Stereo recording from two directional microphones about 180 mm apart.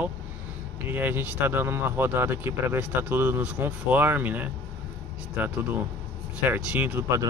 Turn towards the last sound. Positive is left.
turn(degrees=-10)  # may be behind; listen again after turning